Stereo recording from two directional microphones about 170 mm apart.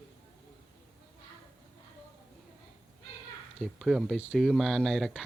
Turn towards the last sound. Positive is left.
turn(degrees=0)  # may be behind; listen again after turning